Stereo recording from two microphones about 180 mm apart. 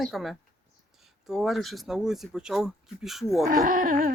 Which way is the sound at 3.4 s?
50° right (ahead or behind).